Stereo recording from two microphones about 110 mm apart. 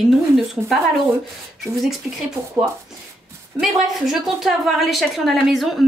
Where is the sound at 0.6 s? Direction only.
25° right (ahead or behind).